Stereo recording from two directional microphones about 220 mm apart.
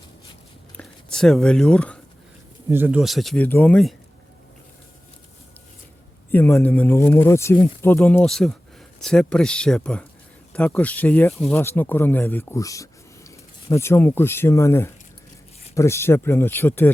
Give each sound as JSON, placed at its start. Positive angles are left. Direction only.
{"t": 0.8, "sound": "speech", "side_deg": 0}
{"t": 2.6, "sound": "speech", "side_deg": -10}
{"t": 6.3, "sound": "speech", "side_deg": 10}